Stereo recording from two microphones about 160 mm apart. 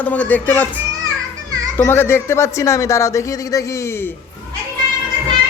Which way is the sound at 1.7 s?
15° left (ahead or behind).